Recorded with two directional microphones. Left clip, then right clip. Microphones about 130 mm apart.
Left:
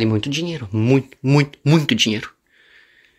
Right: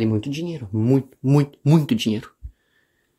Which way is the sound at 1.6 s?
50° right (ahead or behind).